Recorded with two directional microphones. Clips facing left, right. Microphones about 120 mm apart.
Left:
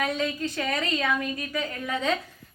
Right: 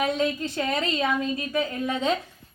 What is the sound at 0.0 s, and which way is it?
A woman's voice, 20° right (ahead or behind).